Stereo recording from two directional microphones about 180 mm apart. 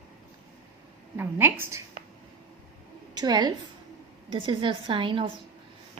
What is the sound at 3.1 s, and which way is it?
A woman's voice, 20° right (ahead or behind).